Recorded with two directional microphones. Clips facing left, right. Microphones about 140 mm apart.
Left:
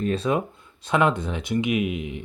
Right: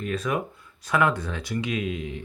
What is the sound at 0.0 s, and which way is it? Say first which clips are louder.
Speech: left 4 dB; 30° left (ahead or behind).